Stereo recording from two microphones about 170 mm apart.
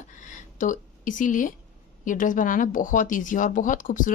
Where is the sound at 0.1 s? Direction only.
50° left (ahead or behind).